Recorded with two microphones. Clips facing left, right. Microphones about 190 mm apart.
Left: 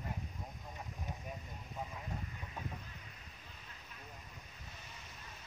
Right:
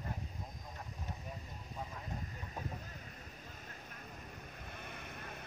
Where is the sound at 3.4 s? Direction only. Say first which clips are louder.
Right 5 dB; 45° right (ahead or behind).